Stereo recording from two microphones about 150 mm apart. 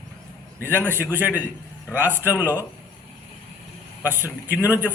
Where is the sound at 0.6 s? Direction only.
15° right (ahead or behind).